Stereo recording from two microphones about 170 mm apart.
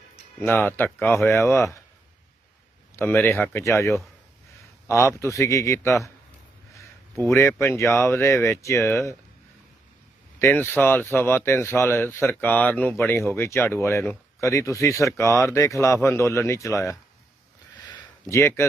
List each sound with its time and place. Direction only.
0.4 s speech: 10° left (ahead or behind)
2.9 s speech: 10° left (ahead or behind)
7.2 s speech: 15° left (ahead or behind)
10.4 s speech: 15° left (ahead or behind)
17.8 s a sound: 20° left (ahead or behind)